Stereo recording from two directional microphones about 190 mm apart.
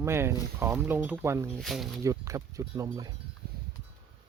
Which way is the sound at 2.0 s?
15° right (ahead or behind).